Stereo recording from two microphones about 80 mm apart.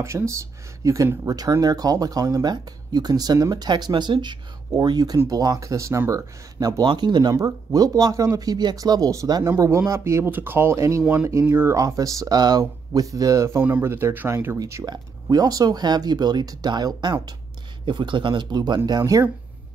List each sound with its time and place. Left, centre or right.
0.0 s speech: right
1.2 s speech: right
2.4 s speech: right
4.7 s speech: right
6.8 s speech: right
7.3 s speech: right
9.4 s speech: right
11.8 s speech: right
13.6 s speech: right
14.9 s speech: right
17.8 s speech: right
18.9 s speech: right